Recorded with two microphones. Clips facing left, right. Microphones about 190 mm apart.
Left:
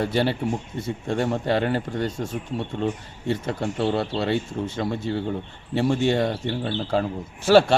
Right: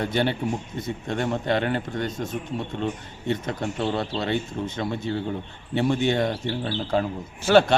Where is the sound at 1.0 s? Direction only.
5° left (ahead or behind).